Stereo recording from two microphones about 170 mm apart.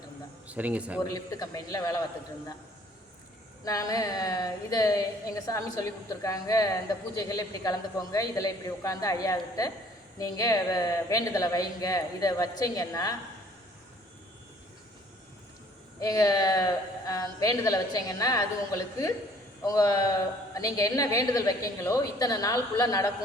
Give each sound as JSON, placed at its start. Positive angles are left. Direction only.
{"t": 0.4, "sound": "speech", "side_deg": -10}
{"t": 1.0, "sound": "a woman's voice", "side_deg": 20}
{"t": 3.6, "sound": "a woman's voice", "side_deg": 20}
{"t": 16.0, "sound": "a woman's voice", "side_deg": 20}